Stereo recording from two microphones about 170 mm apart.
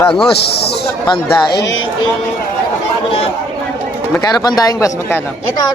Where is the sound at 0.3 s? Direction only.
75° left (ahead or behind).